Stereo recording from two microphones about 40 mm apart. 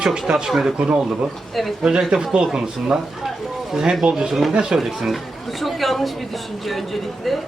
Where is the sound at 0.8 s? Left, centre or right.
Right.